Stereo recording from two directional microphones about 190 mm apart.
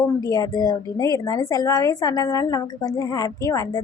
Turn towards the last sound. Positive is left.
turn(degrees=15)  # may be behind; listen again after turning